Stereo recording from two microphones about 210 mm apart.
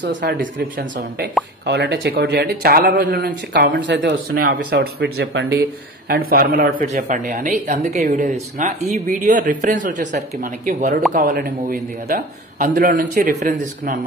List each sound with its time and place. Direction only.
0.0 s speech: 55° right (ahead or behind)
0.4 s speech: 40° right (ahead or behind)